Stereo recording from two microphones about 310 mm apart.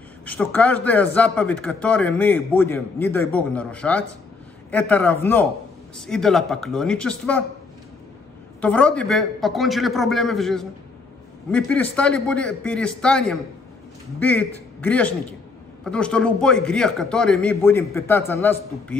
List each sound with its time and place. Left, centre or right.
0.2 s a man's voice: centre
8.5 s a man's voice: centre